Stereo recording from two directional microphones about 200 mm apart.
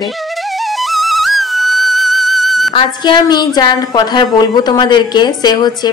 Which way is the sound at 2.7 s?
20° left (ahead or behind).